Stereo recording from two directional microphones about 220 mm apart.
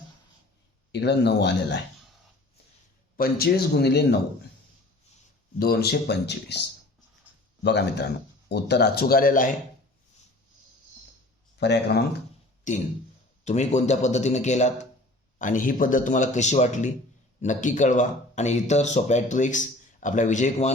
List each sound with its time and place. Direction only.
0.9 s speech: 50° left (ahead or behind)
3.2 s speech: 45° left (ahead or behind)
5.5 s speech: 45° left (ahead or behind)
11.6 s speech: 50° left (ahead or behind)
12.7 s speech: 35° left (ahead or behind)